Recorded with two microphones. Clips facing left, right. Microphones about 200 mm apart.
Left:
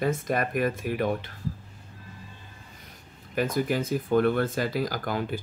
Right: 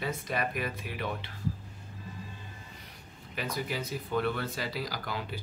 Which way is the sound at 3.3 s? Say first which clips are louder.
Left 9 dB; 50° left (ahead or behind).